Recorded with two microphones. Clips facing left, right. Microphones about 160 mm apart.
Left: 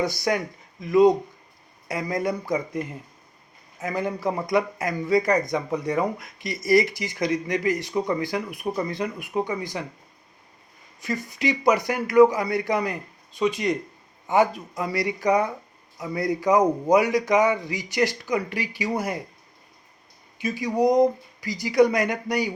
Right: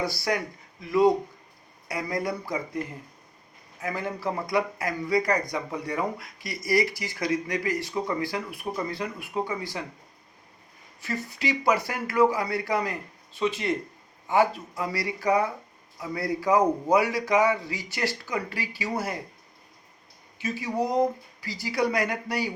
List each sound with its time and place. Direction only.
0.0 s a man's voice: 20° left (ahead or behind)
11.0 s a man's voice: 15° left (ahead or behind)
20.4 s a man's voice: 15° left (ahead or behind)